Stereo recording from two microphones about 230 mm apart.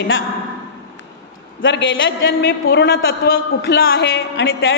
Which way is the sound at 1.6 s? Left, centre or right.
Left.